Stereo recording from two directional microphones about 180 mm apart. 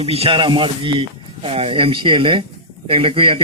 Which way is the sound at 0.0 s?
35° right (ahead or behind).